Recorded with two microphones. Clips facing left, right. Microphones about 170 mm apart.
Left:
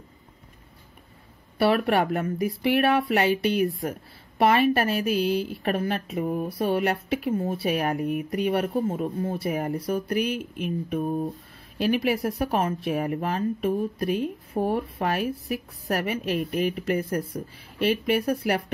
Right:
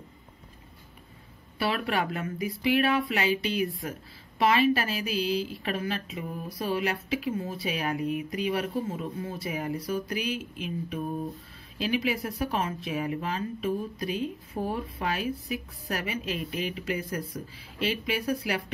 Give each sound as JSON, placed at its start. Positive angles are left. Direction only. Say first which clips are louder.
{"t": 1.6, "sound": "a woman's voice", "louder": "left 7 dB", "side_deg": 55}
{"t": 14.5, "sound": "speech", "louder": "left 6 dB", "side_deg": 30}
{"t": 15.0, "sound": "a woman's voice", "louder": "left 3 dB", "side_deg": 60}
{"t": 18.2, "sound": "speech", "louder": "left 4 dB", "side_deg": 35}